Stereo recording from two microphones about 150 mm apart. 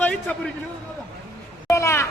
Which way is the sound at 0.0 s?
10° left (ahead or behind).